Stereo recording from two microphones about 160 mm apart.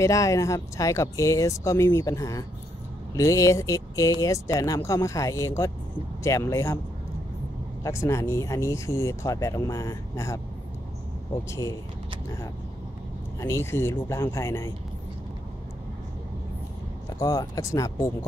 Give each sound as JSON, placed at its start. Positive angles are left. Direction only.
{"t": 0.0, "sound": "speech", "side_deg": 20}
{"t": 7.8, "sound": "speech", "side_deg": 20}
{"t": 13.4, "sound": "speech", "side_deg": 15}
{"t": 17.2, "sound": "speech", "side_deg": 25}